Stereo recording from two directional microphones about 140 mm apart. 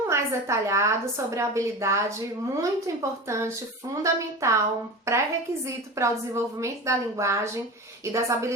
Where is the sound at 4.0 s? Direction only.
20° right (ahead or behind).